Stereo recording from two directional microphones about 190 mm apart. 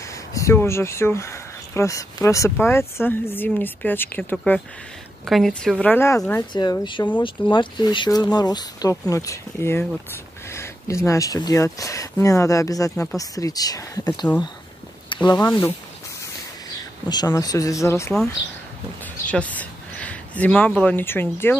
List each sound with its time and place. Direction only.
0.3 s speech: 15° left (ahead or behind)
6.5 s speech: 25° left (ahead or behind)
10.5 s a sound: 15° left (ahead or behind)
11.1 s speech: 20° left (ahead or behind)
12.9 s speech: 5° left (ahead or behind)
13.2 s speech: 20° left (ahead or behind)
15.2 s speech: 20° left (ahead or behind)
17.1 s speech: 20° left (ahead or behind)
19.2 s speech: 5° left (ahead or behind)